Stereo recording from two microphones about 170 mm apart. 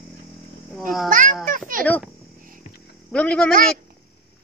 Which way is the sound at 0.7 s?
Centre (ahead or behind).